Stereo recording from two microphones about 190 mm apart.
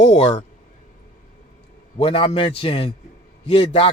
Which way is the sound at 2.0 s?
30° left (ahead or behind).